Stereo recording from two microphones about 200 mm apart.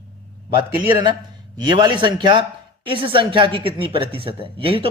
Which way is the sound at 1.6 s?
20° right (ahead or behind).